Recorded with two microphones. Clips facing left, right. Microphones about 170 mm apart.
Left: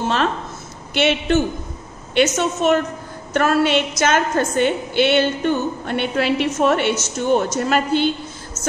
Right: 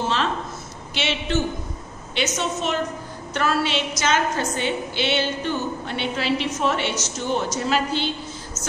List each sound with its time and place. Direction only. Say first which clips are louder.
0.9 s a woman's voice: left 7 dB; 55° left (ahead or behind)